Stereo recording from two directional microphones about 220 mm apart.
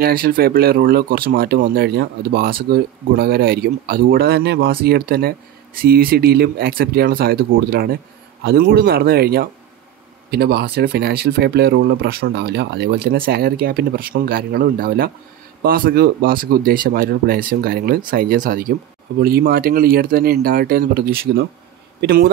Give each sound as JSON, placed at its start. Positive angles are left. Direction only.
{"t": 0.0, "sound": "speech", "side_deg": -40}